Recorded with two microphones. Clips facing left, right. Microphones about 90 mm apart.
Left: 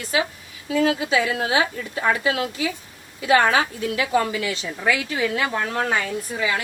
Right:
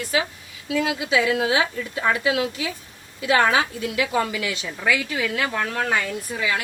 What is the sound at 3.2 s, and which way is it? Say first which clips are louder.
A woman's voice: left 1 dB; 40° left (ahead or behind).